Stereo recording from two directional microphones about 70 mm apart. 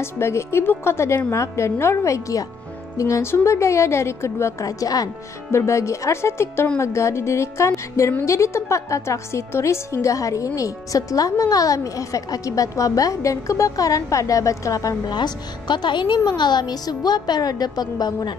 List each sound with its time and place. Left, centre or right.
0.0 s a woman's voice: left
5.5 s a woman's voice: left
15.0 s a woman's voice: left